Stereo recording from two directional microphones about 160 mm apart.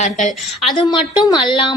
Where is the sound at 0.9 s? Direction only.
30° left (ahead or behind).